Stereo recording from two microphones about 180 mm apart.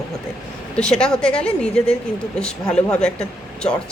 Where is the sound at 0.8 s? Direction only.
5° left (ahead or behind).